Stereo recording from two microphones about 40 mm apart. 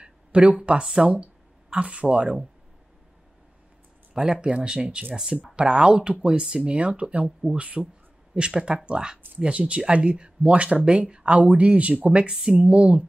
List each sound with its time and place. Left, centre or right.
0.0 s a sound: right
0.9 s speech: right
4.1 s speech: right
5.1 s a woman's voice: centre
11.3 s a woman's voice: right